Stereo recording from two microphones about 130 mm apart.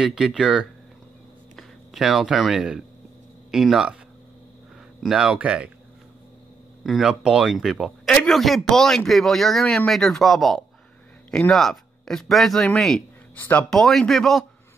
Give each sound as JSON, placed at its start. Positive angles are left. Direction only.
{"t": 0.0, "sound": "speech", "side_deg": -5}
{"t": 5.0, "sound": "speech", "side_deg": -5}
{"t": 6.8, "sound": "speech", "side_deg": -5}
{"t": 13.7, "sound": "speech", "side_deg": 0}